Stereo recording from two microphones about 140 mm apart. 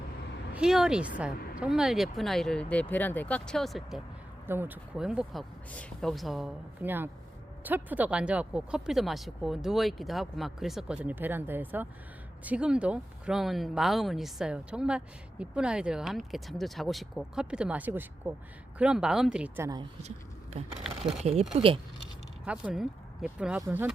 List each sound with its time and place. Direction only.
0.5 s speech: 5° right (ahead or behind)
4.4 s speech: 15° right (ahead or behind)
4.9 s speech: 5° right (ahead or behind)
6.8 s speech: 15° right (ahead or behind)
20.0 s speech: 50° right (ahead or behind)
22.4 s speech: 5° right (ahead or behind)